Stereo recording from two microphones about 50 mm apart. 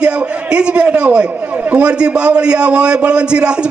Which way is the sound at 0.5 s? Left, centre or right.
Right.